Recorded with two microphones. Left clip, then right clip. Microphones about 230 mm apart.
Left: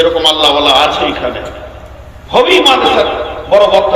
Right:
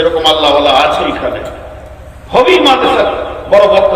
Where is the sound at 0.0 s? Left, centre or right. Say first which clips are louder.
Even; left.